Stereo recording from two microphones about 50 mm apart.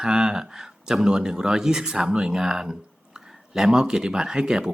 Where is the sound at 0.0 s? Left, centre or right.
Centre.